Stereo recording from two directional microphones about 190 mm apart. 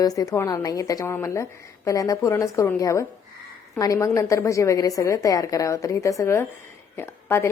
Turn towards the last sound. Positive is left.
turn(degrees=10)  # may be behind; listen again after turning